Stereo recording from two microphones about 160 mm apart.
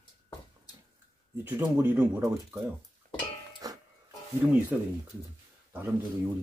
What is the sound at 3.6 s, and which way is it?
Music, 25° right (ahead or behind).